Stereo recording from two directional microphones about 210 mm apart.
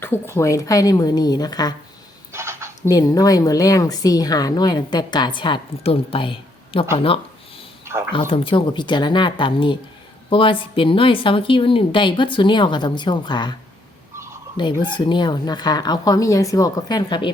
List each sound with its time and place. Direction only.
0.0 s a woman's voice: 10° left (ahead or behind)
2.3 s a sound: 15° right (ahead or behind)
2.8 s a woman's voice: 15° left (ahead or behind)
8.3 s speech: 25° left (ahead or behind)